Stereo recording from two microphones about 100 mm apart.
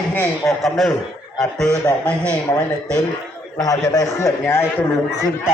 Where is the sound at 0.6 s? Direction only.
Centre (ahead or behind).